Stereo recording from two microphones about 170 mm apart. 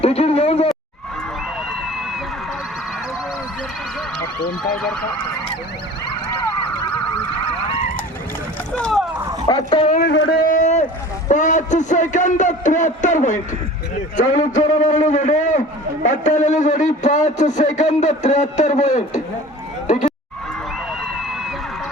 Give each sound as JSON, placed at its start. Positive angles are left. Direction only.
{"t": 0.0, "sound": "speech", "side_deg": 35}
{"t": 4.7, "sound": "speech", "side_deg": 5}
{"t": 8.7, "sound": "a sound", "side_deg": 5}
{"t": 9.5, "sound": "speech", "side_deg": 25}
{"t": 10.0, "sound": "vehicle", "side_deg": 80}
{"t": 11.3, "sound": "a sound", "side_deg": 45}
{"t": 14.2, "sound": "a man's voice", "side_deg": 50}